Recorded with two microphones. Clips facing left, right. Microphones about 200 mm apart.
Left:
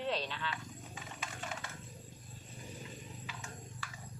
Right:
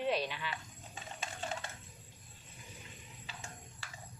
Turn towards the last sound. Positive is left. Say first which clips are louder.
# left 3 dB
turn(degrees=-30)  # may be behind; listen again after turning